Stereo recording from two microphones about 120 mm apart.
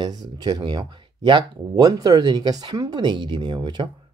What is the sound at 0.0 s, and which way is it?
Speech, 35° right (ahead or behind).